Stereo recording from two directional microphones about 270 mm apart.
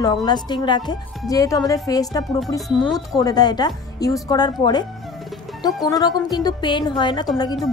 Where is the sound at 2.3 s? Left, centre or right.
Centre.